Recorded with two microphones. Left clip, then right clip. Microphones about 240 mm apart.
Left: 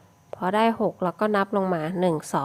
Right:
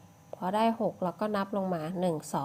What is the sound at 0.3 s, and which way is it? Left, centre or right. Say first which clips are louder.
Speech: left 6 dB; left.